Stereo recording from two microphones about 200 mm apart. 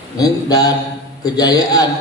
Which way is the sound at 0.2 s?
20° left (ahead or behind).